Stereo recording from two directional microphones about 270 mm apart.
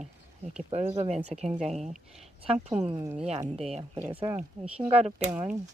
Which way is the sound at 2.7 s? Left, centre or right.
Centre.